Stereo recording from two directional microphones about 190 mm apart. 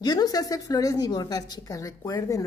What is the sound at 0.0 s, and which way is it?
A woman's voice, 20° left (ahead or behind).